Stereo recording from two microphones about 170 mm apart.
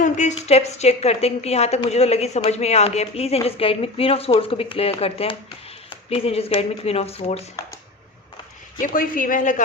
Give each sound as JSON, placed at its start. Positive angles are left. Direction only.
{"t": 0.0, "sound": "speech", "side_deg": 45}
{"t": 8.8, "sound": "speech", "side_deg": 55}